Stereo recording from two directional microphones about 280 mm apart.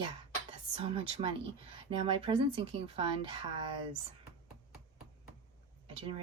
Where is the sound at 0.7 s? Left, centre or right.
Centre.